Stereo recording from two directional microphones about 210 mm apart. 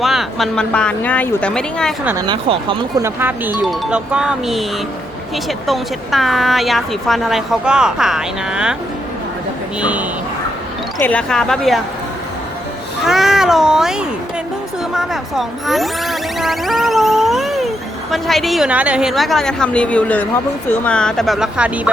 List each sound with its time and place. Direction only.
0.0 s a woman's voice: centre (ahead or behind)
2.0 s speech: 20° right (ahead or behind)
3.2 s a woman's voice: 10° right (ahead or behind)
9.8 s speech: 5° right (ahead or behind)
11.0 s a woman's voice: 5° left (ahead or behind)
13.1 s cat: centre (ahead or behind)
14.9 s a woman's voice: centre (ahead or behind)